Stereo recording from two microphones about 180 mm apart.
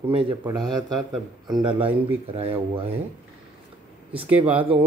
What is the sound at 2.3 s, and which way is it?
Speech, 35° right (ahead or behind).